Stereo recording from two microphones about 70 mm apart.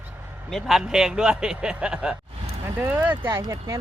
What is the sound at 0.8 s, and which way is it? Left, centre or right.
Speech, centre.